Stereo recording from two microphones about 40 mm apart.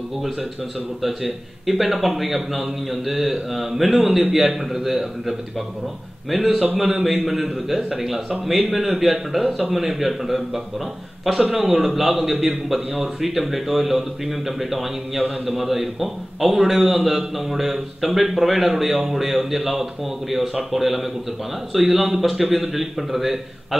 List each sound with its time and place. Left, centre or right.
1.0 s a man's voice: centre
6.5 s a man's voice: right
6.9 s a man's voice: centre
11.6 s a man's voice: centre